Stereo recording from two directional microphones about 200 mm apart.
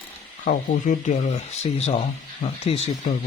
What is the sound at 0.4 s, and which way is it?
Speech, 45° left (ahead or behind).